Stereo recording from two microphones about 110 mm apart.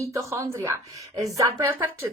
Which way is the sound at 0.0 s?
30° right (ahead or behind).